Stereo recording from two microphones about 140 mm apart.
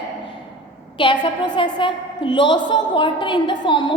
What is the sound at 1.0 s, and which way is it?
A woman's voice, 35° left (ahead or behind).